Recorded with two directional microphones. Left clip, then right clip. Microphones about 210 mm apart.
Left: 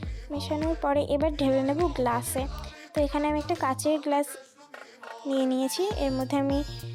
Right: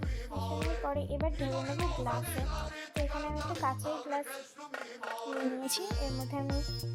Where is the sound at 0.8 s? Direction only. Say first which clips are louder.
Left 11 dB; 50° left (ahead or behind).